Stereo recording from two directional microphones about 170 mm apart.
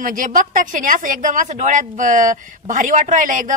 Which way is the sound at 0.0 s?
50° right (ahead or behind).